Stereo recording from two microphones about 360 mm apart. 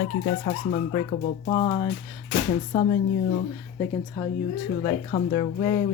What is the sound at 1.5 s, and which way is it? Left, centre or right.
Speech, centre.